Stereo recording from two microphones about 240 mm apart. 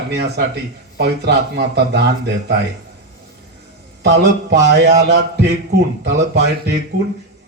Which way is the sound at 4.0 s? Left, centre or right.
Right.